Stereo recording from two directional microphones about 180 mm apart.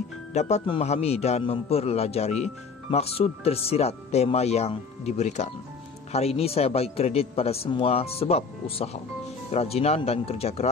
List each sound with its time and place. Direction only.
0.3 s a man's voice: 40° left (ahead or behind)